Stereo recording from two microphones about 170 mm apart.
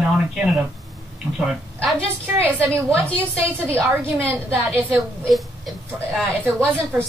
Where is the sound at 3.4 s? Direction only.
5° left (ahead or behind).